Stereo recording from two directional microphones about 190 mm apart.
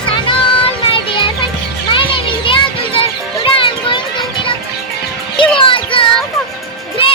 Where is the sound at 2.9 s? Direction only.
30° left (ahead or behind).